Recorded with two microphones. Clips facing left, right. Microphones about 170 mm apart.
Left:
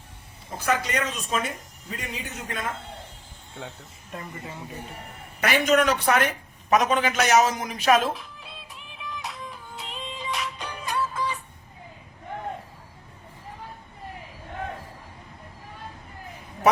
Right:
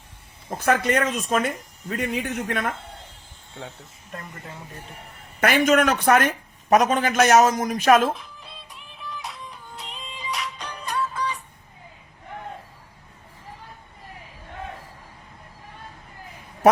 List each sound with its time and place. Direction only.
0.6 s a man's voice: 55° right (ahead or behind)
4.1 s speech: centre (ahead or behind)
5.4 s speech: 50° right (ahead or behind)
8.1 s music: centre (ahead or behind)